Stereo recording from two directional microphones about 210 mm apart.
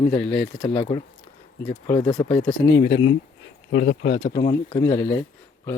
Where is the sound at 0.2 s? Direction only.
5° left (ahead or behind).